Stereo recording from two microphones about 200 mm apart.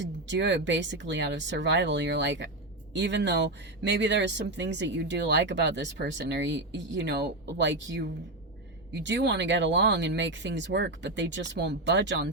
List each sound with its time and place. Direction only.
0.0 s speech: 60° right (ahead or behind)
9.0 s speech: 60° right (ahead or behind)